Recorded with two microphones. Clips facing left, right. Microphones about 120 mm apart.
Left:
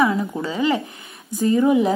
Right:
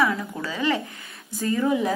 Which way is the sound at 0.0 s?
20° left (ahead or behind).